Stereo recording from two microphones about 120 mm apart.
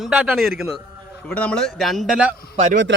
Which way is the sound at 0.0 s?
5° right (ahead or behind).